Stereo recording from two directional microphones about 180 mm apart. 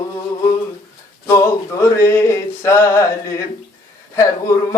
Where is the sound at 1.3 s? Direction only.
15° left (ahead or behind).